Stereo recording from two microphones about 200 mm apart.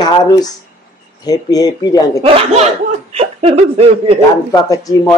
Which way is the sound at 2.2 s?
30° right (ahead or behind).